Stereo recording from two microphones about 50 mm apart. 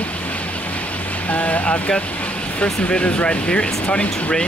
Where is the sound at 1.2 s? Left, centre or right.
Left.